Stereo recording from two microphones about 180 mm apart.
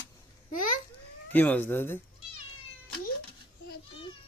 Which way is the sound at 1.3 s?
10° left (ahead or behind).